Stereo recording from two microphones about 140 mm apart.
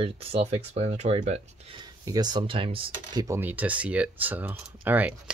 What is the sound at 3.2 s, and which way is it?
Speech, 15° right (ahead or behind).